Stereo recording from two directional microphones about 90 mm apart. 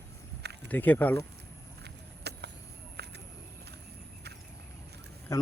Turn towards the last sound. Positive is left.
turn(degrees=35)  # may be behind; listen again after turning